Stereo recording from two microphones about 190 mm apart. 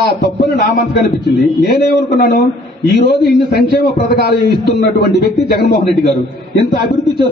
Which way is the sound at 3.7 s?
55° left (ahead or behind).